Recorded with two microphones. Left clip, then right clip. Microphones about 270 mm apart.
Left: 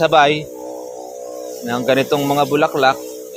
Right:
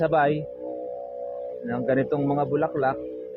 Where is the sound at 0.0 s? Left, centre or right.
Left.